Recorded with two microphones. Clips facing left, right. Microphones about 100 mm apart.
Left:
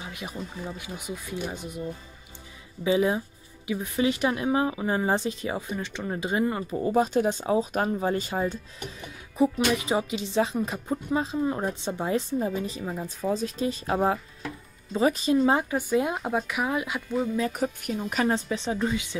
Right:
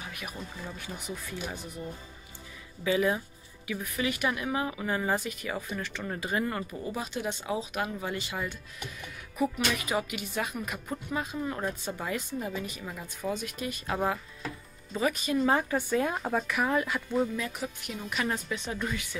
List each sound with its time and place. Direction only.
0.0 s music: 25° left (ahead or behind)
0.6 s speech: 15° left (ahead or behind)
2.8 s speech: 25° left (ahead or behind)
6.7 s speech: 40° left (ahead or behind)
15.4 s speech: 15° left (ahead or behind)
17.4 s speech: 45° left (ahead or behind); by 19.1 s 25° left (ahead or behind)